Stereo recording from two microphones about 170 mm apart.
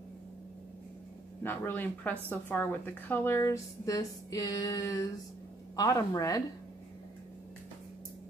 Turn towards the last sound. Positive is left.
turn(degrees=20)  # may be behind; listen again after turning